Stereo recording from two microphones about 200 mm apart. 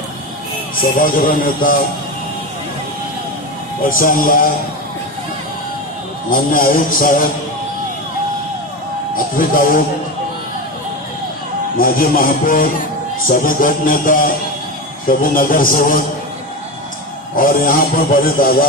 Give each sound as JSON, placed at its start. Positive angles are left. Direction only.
{"t": 0.7, "sound": "a man's voice", "side_deg": 45}
{"t": 4.0, "sound": "a man's voice", "side_deg": 45}
{"t": 6.3, "sound": "a man's voice", "side_deg": 45}
{"t": 9.1, "sound": "a man's voice", "side_deg": 45}
{"t": 11.7, "sound": "a man's voice", "side_deg": 45}
{"t": 17.4, "sound": "a man's voice", "side_deg": 45}